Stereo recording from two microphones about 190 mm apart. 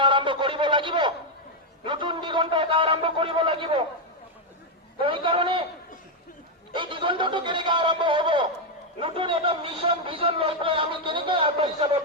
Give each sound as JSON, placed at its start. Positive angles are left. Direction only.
{"t": 0.0, "sound": "a sound", "side_deg": -25}
{"t": 4.9, "sound": "a man's voice", "side_deg": -25}
{"t": 6.7, "sound": "a man's voice", "side_deg": -25}